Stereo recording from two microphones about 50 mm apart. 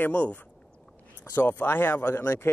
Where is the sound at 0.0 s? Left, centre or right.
Left.